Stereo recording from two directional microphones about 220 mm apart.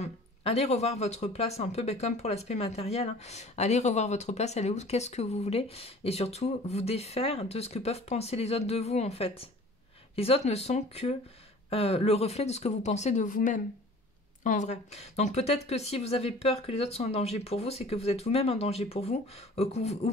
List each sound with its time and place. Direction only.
0.0 s speech: 30° left (ahead or behind)